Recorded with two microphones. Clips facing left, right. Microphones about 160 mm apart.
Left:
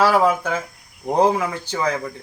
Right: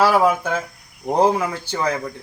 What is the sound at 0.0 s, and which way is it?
Speech, 10° right (ahead or behind).